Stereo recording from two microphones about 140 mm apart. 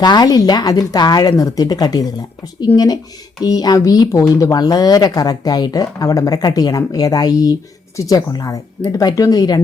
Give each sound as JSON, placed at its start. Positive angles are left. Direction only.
{"t": 0.0, "sound": "speech", "side_deg": 30}